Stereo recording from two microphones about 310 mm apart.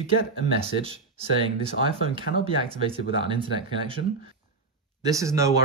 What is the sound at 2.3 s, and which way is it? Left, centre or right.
Speech, left.